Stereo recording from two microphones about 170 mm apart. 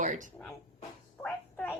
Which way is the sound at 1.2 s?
5° left (ahead or behind).